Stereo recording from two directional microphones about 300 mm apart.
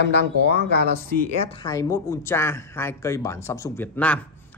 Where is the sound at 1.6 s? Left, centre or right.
Centre.